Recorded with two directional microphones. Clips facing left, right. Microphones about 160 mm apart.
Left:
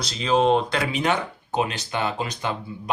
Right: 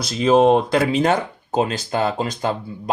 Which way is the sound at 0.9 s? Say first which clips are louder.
Right 5 dB; 35° right (ahead or behind).